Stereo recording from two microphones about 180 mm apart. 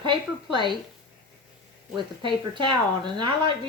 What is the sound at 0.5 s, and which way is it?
Speech, 25° right (ahead or behind).